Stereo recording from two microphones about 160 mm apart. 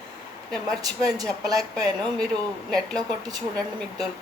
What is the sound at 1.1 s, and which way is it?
Speech, 25° right (ahead or behind).